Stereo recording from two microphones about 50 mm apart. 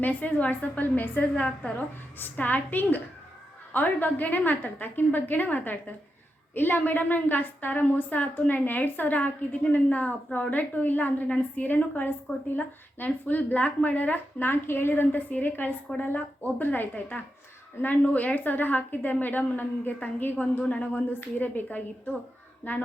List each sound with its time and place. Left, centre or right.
0.0 s a woman's voice: left
20.9 s a woman's voice: left